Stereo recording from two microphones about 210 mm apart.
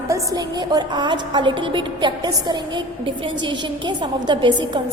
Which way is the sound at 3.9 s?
20° right (ahead or behind).